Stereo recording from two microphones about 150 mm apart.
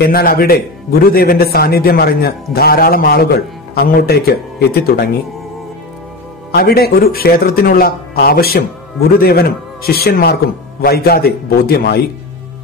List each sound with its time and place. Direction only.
0.0 s a man's voice: 80° left
6.5 s a man's voice: 90° left